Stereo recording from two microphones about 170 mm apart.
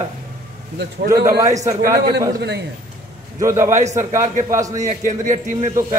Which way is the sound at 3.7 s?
45° right (ahead or behind).